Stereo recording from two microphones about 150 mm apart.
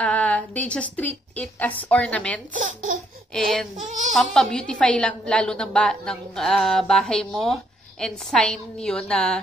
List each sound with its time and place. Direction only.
0.0 s a woman's voice: 10° left (ahead or behind)
2.5 s speech: 60° right (ahead or behind)
3.3 s a woman's voice: centre (ahead or behind)